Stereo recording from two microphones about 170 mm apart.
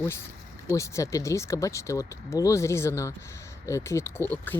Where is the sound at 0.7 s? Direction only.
15° left (ahead or behind).